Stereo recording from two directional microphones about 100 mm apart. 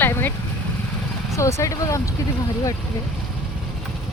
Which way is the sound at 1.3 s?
30° left (ahead or behind).